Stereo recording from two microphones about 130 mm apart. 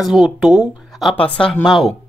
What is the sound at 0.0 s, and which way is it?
Speech, centre (ahead or behind).